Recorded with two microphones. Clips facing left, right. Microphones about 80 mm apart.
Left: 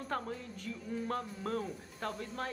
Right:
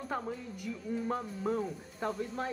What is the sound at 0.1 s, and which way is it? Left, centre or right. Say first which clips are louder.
Speech: right 1 dB; centre.